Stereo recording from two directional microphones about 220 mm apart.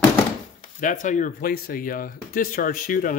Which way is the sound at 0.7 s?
35° left (ahead or behind).